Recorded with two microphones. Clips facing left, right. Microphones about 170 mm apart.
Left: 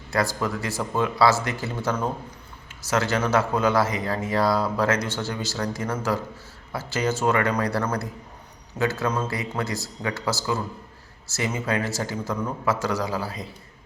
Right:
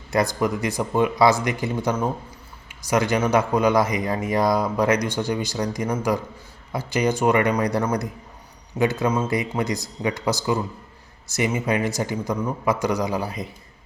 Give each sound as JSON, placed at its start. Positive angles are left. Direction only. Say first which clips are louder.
{"t": 0.1, "sound": "speech", "louder": "right 3 dB", "side_deg": -20}